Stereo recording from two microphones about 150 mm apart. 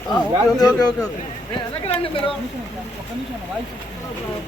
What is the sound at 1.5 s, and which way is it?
Speech, 35° left (ahead or behind).